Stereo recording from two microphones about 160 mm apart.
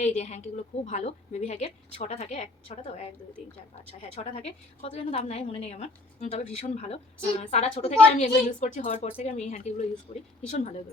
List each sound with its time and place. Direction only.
0.0 s a woman's voice: 45° left (ahead or behind)
4.1 s a woman's voice: 45° left (ahead or behind)